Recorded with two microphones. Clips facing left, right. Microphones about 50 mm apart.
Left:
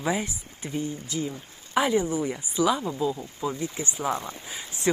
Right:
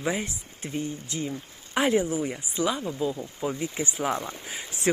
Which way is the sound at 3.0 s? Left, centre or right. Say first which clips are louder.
Left 1 dB; right.